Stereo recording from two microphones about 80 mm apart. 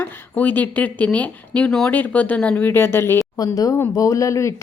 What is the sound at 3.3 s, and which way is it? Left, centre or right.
Speech, left.